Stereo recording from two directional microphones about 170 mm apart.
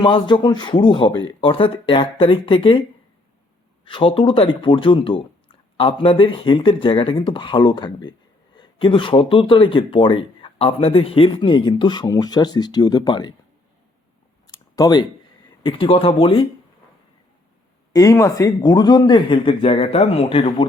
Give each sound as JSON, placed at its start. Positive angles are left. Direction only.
{"t": 0.0, "sound": "speech", "side_deg": 30}
{"t": 3.8, "sound": "speech", "side_deg": 30}
{"t": 14.4, "sound": "a sound", "side_deg": 20}
{"t": 15.6, "sound": "speech", "side_deg": 30}
{"t": 17.9, "sound": "speech", "side_deg": 20}